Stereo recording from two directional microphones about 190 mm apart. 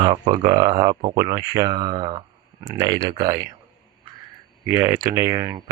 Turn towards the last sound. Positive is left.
turn(degrees=-20)  # may be behind; listen again after turning